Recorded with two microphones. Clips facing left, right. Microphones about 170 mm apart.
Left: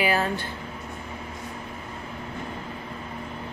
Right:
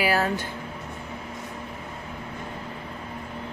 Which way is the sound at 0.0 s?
5° right (ahead or behind).